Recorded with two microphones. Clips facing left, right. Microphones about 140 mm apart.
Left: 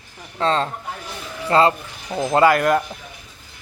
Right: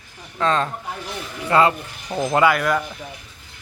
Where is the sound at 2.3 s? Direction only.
40° left (ahead or behind).